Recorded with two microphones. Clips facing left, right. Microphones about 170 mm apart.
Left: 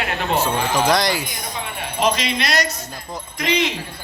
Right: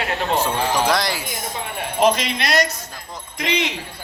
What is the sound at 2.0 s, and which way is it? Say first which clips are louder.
Speech: right 2 dB; 55° right (ahead or behind).